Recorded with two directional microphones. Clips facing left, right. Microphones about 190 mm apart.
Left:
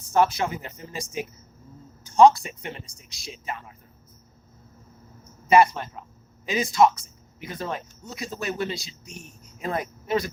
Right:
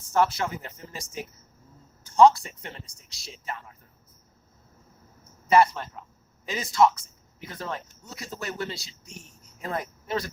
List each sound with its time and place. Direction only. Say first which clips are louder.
0.1 s speech: left 2 dB; 15° left (ahead or behind)
5.5 s speech: left 2 dB; 15° left (ahead or behind)